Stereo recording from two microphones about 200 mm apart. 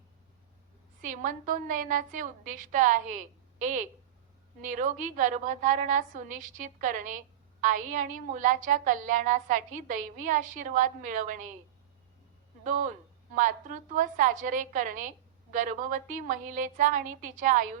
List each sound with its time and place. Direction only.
1.0 s a woman's voice: 40° right (ahead or behind)
12.6 s a woman's voice: 40° right (ahead or behind)